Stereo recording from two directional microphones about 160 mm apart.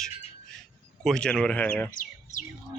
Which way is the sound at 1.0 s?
5° left (ahead or behind).